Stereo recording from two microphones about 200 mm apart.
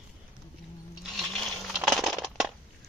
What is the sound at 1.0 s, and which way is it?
Crushing, centre (ahead or behind).